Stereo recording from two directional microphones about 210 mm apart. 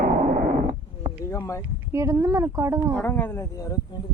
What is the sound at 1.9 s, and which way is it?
Speech, 15° right (ahead or behind).